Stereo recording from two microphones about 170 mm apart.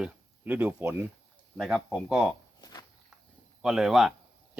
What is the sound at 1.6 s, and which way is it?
Speech, centre (ahead or behind).